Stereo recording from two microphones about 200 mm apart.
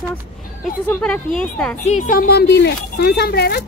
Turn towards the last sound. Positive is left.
turn(degrees=50)  # may be behind; listen again after turning